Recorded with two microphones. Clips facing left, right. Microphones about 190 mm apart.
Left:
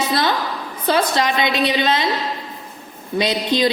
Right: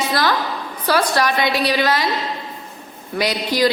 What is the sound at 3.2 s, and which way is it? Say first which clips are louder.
Speech: even; 25° left (ahead or behind).